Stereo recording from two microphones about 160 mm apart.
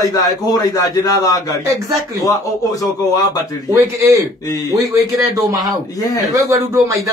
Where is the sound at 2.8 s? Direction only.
25° left (ahead or behind).